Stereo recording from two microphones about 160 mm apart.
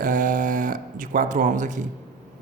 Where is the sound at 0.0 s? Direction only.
55° right (ahead or behind).